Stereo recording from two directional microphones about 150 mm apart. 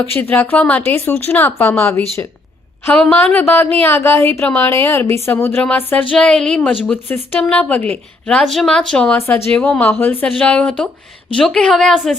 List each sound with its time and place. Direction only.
0.2 s a woman's voice: 15° left (ahead or behind)